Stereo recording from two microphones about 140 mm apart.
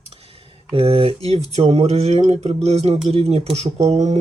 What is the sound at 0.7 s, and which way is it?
Speech, 40° right (ahead or behind).